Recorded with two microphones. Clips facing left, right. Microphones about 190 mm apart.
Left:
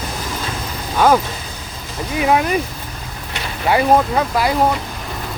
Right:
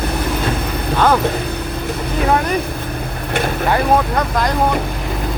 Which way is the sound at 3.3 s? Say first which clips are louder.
Right 10 dB; 55° right (ahead or behind).